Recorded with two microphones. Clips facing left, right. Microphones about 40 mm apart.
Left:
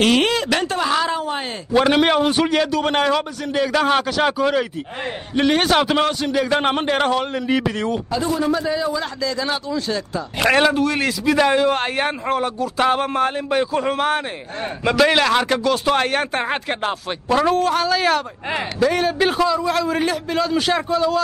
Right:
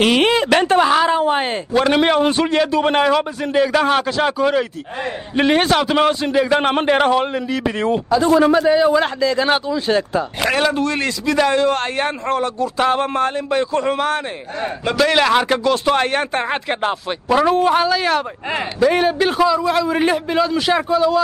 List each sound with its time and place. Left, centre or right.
0.0 s speech: centre; by 0.8 s right
0.8 s a woman's voice: centre
1.7 s a man's voice: centre
5.3 s speech: centre
5.6 s a man's voice: centre
6.2 s speech: centre
8.1 s a man's voice: right
8.5 s speech: right
9.2 s speech: right
10.7 s a man's voice: centre
15.1 s a man's voice: centre
19.9 s speech: centre